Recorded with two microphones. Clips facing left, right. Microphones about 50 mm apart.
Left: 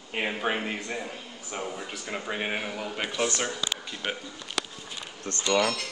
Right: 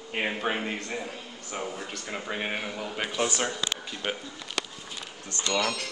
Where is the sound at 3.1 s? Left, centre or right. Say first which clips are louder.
Right 1 dB; centre.